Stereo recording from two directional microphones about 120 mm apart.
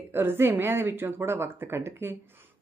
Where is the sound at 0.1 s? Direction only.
20° right (ahead or behind).